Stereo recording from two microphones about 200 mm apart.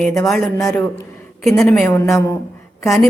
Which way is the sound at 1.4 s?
Centre (ahead or behind).